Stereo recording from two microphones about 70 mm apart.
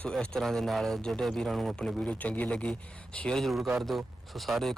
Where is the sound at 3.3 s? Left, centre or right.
Centre.